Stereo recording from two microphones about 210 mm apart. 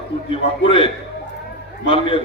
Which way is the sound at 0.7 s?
25° left (ahead or behind).